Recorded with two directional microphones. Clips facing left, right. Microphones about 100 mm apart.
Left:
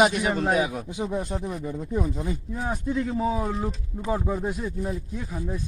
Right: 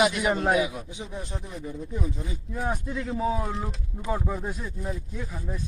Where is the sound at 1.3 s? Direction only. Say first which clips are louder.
Left 6 dB; 50° left (ahead or behind).